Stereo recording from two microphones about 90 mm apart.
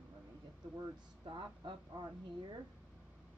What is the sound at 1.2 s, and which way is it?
Speech, 60° right (ahead or behind).